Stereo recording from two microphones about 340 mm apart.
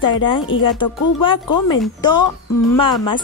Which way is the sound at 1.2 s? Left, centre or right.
Centre.